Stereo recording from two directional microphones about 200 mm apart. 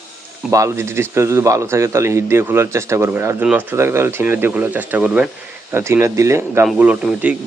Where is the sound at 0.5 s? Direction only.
15° right (ahead or behind).